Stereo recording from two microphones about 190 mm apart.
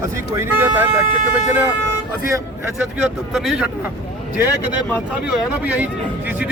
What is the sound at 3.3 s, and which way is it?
Speech, centre (ahead or behind).